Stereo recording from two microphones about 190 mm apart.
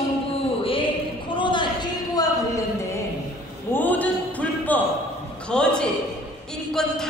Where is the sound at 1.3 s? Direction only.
25° left (ahead or behind).